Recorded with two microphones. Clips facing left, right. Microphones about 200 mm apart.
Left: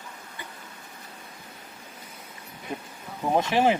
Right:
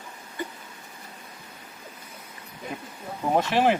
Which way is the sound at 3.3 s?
10° left (ahead or behind).